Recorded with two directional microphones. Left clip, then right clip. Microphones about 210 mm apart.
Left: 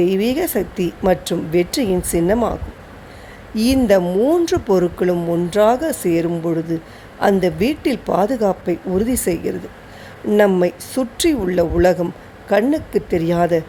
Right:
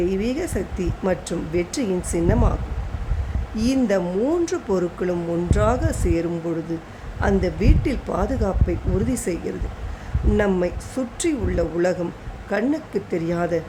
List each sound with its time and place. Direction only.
0.0 s speech: 20° left (ahead or behind)